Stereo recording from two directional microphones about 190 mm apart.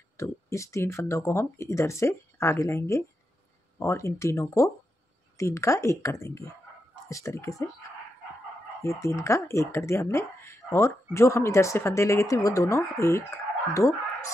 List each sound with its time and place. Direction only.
0.2 s speech: 15° left (ahead or behind)
8.8 s speech: 15° left (ahead or behind)